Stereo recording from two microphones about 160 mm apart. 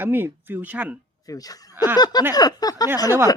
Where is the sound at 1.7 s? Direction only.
15° right (ahead or behind).